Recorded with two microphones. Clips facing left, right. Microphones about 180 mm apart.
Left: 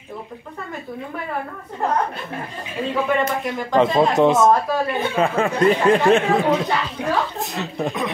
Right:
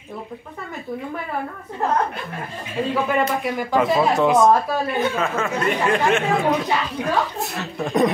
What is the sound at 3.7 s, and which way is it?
Speech, 10° right (ahead or behind).